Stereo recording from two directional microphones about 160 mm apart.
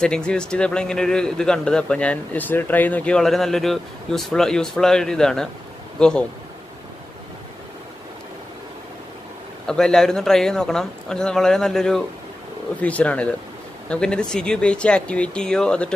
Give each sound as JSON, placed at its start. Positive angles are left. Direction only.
{"t": 0.0, "sound": "a man's voice", "side_deg": 5}
{"t": 9.7, "sound": "a man's voice", "side_deg": 5}